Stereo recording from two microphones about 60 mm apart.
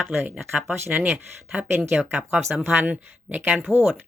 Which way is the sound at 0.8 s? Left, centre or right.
Right.